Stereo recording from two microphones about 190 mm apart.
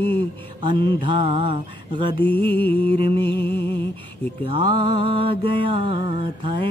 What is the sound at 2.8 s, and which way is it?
Mantra, 30° right (ahead or behind).